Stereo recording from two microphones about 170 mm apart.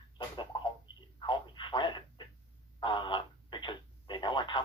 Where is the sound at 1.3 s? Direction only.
25° left (ahead or behind).